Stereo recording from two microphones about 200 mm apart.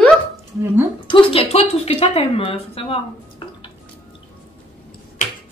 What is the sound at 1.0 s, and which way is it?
Speech, 25° left (ahead or behind).